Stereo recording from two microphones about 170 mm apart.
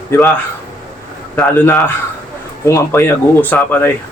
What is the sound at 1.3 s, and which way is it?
A man's voice, 10° left (ahead or behind).